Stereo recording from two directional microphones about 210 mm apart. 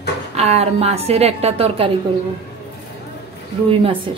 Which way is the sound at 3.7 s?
25° right (ahead or behind).